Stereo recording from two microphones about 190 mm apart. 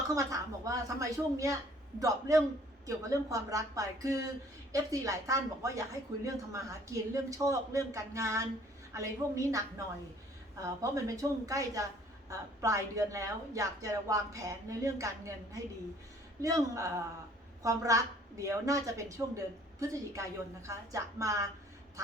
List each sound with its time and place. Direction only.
0.1 s a woman's voice: 15° right (ahead or behind)